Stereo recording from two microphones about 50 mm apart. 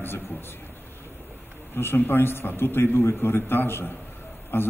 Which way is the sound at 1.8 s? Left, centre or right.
Left.